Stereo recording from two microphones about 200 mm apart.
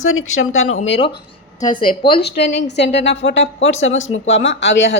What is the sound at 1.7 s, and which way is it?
Speech, 45° left (ahead or behind).